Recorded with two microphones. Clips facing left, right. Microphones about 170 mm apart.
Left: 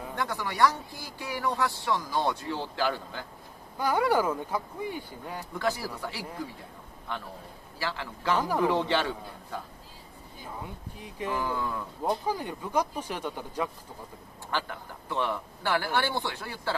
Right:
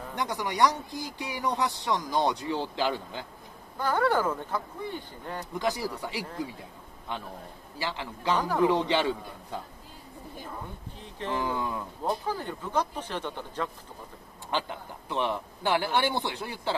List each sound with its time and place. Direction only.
0.1 s speech: 15° right (ahead or behind)
3.7 s speech: 10° left (ahead or behind)
5.5 s speech: 15° right (ahead or behind)
7.8 s speech: 20° right (ahead or behind)
8.4 s speech: 10° left (ahead or behind)
8.6 s speech: 15° right (ahead or behind)
11.0 s speech: 10° left (ahead or behind)
11.3 s speech: 20° right (ahead or behind)
12.0 s speech: 10° left (ahead or behind)
14.5 s speech: 20° right (ahead or behind)